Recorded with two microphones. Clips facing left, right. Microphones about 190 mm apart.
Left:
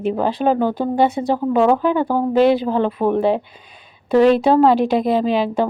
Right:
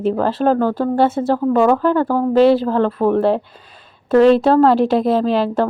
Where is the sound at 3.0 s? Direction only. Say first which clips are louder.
Right 2 dB; centre (ahead or behind).